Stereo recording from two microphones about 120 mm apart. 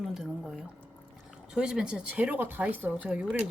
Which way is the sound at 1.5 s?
5° right (ahead or behind).